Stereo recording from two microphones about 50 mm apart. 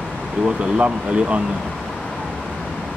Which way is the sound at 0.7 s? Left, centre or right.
Right.